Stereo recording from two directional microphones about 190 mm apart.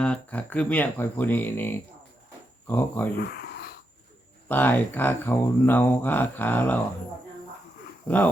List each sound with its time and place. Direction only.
0.0 s speech: 5° left (ahead or behind)
3.2 s a sound: 55° left (ahead or behind)
4.4 s speech: 10° left (ahead or behind)
8.0 s speech: 10° left (ahead or behind)